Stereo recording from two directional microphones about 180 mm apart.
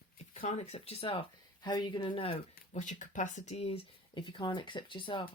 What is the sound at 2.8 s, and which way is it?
Speech, 45° left (ahead or behind).